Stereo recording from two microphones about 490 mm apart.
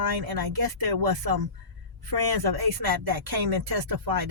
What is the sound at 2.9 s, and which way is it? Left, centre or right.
Speech, right.